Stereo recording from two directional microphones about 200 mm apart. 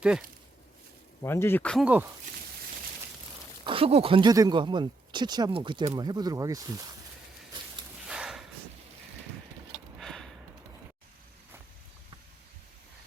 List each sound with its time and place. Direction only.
1.2 s speech: 10° left (ahead or behind)
1.8 s speech: 10° right (ahead or behind)
3.6 s speech: 25° right (ahead or behind)
8.0 s snort: 5° right (ahead or behind)
10.0 s a sound: centre (ahead or behind)